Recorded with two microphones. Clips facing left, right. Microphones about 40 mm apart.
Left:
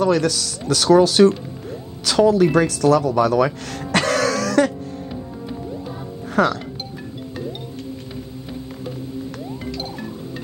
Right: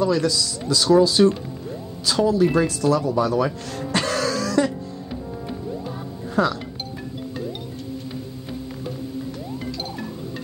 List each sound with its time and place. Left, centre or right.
0.0 s speech: left
6.3 s speech: left